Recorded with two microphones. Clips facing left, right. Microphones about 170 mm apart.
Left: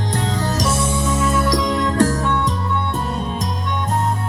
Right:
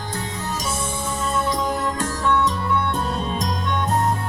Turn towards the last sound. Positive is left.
turn(degrees=0)  # may be behind; listen again after turning